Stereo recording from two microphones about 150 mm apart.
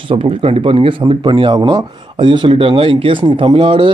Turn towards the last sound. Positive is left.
turn(degrees=-35)  # may be behind; listen again after turning